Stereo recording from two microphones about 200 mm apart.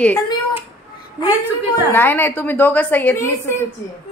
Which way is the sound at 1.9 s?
10° left (ahead or behind).